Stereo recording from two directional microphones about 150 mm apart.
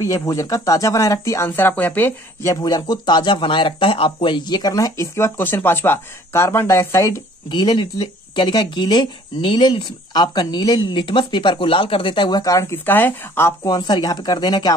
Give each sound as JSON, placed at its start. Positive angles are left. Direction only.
{"t": 0.0, "sound": "speech", "side_deg": 20}
{"t": 2.5, "sound": "speech", "side_deg": 25}
{"t": 13.7, "sound": "speech", "side_deg": 30}